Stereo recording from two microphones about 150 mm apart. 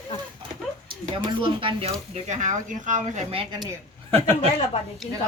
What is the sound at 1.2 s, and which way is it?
Speech, 35° right (ahead or behind).